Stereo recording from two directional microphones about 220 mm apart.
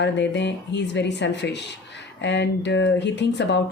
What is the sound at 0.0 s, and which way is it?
Speech, 50° left (ahead or behind).